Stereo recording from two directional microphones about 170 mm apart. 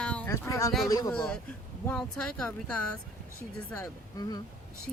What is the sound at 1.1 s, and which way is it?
Speech, 5° left (ahead or behind).